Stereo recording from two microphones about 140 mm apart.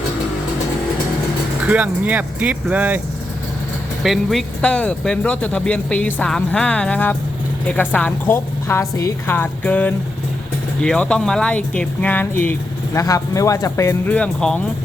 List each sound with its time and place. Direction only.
1.6 s speech: 10° right (ahead or behind)
4.0 s speech: centre (ahead or behind); by 14.1 s 20° left (ahead or behind)
14.1 s speech: 5° left (ahead or behind)